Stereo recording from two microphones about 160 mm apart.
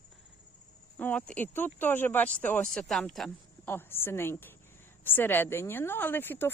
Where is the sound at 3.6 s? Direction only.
15° left (ahead or behind).